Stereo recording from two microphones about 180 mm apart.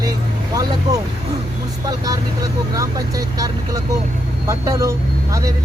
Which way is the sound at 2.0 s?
20° right (ahead or behind).